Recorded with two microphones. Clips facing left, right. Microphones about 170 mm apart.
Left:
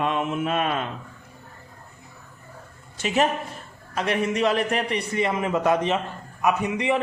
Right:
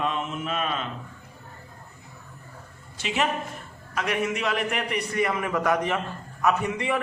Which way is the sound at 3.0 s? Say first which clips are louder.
Left 4 dB; 40° left (ahead or behind).